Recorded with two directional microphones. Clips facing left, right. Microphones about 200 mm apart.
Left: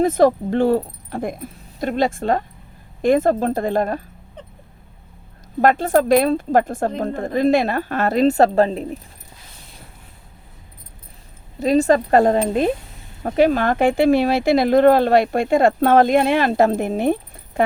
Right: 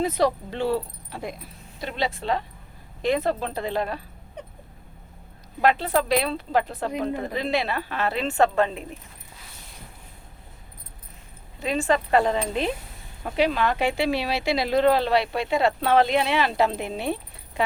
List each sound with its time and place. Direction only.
0.0 s speech: 50° left (ahead or behind)
5.6 s speech: 45° left (ahead or behind)
11.6 s speech: 40° left (ahead or behind)